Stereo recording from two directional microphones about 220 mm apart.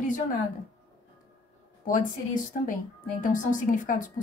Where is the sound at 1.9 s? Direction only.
35° left (ahead or behind).